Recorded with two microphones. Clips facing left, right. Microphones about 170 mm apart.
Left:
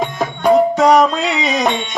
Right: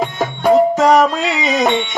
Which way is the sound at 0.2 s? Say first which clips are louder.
Even; 5° right (ahead or behind).